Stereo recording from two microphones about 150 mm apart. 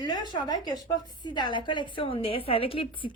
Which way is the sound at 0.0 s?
25° left (ahead or behind).